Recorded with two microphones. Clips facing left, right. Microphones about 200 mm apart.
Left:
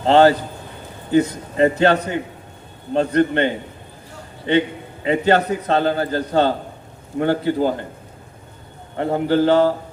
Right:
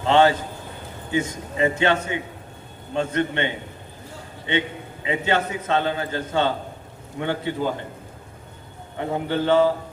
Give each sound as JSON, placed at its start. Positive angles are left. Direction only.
{"t": 0.0, "sound": "a man's voice", "side_deg": 40}
{"t": 1.5, "sound": "a man's voice", "side_deg": 40}
{"t": 5.0, "sound": "a man's voice", "side_deg": 40}
{"t": 9.0, "sound": "a man's voice", "side_deg": 40}